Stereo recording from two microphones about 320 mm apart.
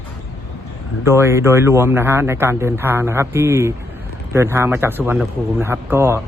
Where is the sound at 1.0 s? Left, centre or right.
Centre.